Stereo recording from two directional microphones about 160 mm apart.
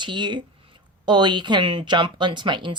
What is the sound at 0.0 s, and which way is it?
Speech, 30° right (ahead or behind).